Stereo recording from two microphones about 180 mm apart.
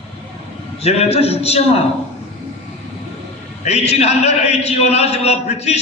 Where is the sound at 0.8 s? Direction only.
35° left (ahead or behind).